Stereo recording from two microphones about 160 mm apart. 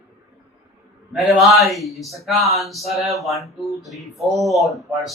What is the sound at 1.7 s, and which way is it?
Speech, centre (ahead or behind).